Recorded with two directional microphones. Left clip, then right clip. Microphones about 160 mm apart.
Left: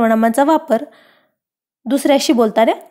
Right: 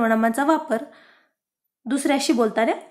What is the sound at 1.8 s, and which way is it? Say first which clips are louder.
Speech: left 8 dB; 40° left (ahead or behind).